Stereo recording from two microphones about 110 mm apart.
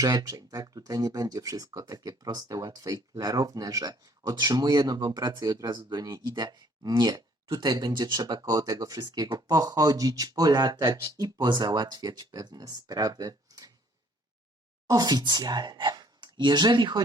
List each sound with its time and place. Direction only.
0.0 s speech: 35° right (ahead or behind)
14.8 s speech: 35° right (ahead or behind)